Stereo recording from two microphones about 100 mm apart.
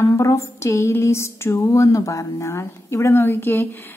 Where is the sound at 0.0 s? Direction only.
30° left (ahead or behind).